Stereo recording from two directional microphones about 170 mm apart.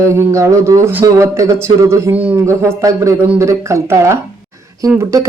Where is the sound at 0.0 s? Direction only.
15° right (ahead or behind).